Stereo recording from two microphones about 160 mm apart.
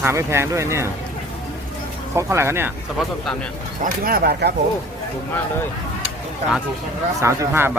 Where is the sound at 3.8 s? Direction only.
65° right (ahead or behind); by 4.5 s 85° right.